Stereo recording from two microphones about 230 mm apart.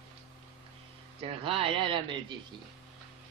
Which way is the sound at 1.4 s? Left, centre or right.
Right.